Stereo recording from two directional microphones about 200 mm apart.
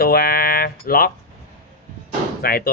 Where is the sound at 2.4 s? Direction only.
50° left (ahead or behind).